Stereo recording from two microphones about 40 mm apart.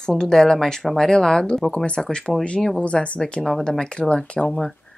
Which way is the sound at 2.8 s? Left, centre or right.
Left.